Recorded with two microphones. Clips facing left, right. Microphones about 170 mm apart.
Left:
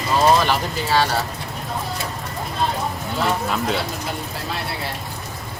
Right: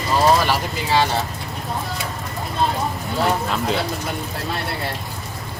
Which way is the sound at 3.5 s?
Centre (ahead or behind).